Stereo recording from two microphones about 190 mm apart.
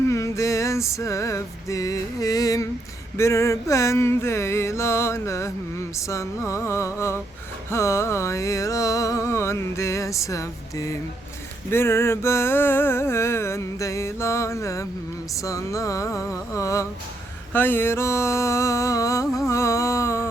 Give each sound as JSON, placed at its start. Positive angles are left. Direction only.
{"t": 0.1, "sound": "music", "side_deg": 15}